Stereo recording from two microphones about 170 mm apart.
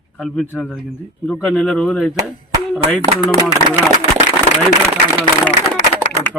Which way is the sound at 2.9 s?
20° left (ahead or behind).